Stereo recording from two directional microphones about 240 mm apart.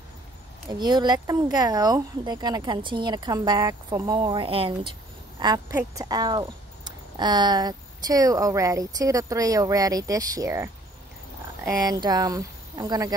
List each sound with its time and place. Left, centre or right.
0.7 s speech: centre